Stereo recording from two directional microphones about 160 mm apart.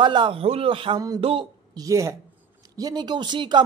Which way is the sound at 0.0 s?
30° right (ahead or behind).